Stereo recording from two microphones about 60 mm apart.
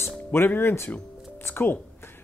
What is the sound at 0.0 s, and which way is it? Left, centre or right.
Music, left.